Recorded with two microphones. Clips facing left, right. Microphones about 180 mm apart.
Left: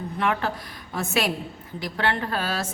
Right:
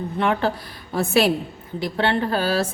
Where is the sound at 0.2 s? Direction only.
30° right (ahead or behind).